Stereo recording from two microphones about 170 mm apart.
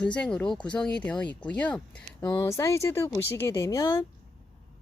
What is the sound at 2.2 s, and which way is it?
Speech, 25° left (ahead or behind).